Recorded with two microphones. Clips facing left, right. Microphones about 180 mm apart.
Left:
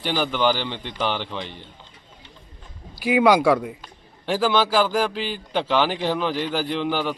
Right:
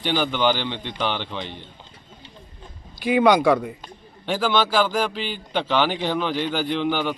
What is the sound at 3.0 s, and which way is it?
Speech, 5° left (ahead or behind).